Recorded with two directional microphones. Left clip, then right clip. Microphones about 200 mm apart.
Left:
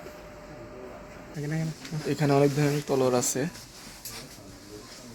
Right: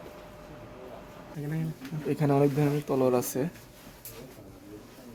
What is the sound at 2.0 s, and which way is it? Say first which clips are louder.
Speech: left 2 dB; 15° right (ahead or behind).